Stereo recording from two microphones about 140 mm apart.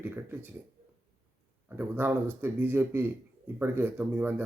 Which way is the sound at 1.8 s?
15° right (ahead or behind).